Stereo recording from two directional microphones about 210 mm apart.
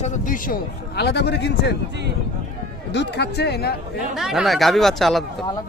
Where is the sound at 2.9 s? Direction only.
55° left (ahead or behind).